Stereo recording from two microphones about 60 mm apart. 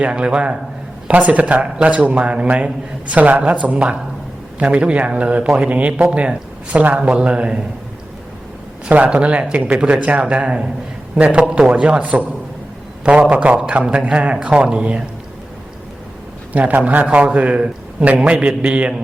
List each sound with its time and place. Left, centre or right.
0.0 s a man's voice: centre
8.9 s speech: right
13.3 s a man's voice: right
16.5 s speech: right